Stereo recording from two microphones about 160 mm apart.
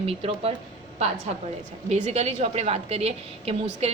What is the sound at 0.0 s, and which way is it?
Speech, 40° right (ahead or behind).